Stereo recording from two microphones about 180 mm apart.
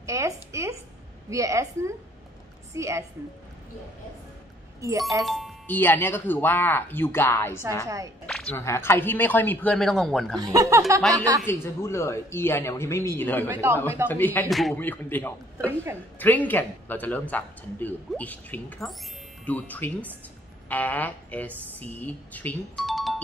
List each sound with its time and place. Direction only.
0.0 s a woman's voice: 15° right (ahead or behind)
4.8 s a woman's voice: 15° right (ahead or behind)
5.2 s speech: centre (ahead or behind)
5.7 s speech: 10° left (ahead or behind)
7.8 s a woman's voice: 20° right (ahead or behind)
8.3 s a sound: 5° left (ahead or behind)
8.5 s speech: 15° left (ahead or behind)
10.4 s speech: 20° right (ahead or behind)
11.4 s speech: 15° left (ahead or behind)
13.5 s a woman's voice: 10° right (ahead or behind)
14.0 s speech: 10° left (ahead or behind)
14.5 s speech: centre (ahead or behind)
15.6 s a woman's voice: 15° right (ahead or behind)
16.2 s speech: 10° left (ahead or behind)